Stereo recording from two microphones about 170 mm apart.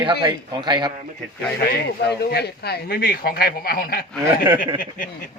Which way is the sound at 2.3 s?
70° left (ahead or behind).